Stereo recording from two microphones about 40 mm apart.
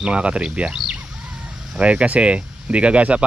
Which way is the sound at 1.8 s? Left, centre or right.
Right.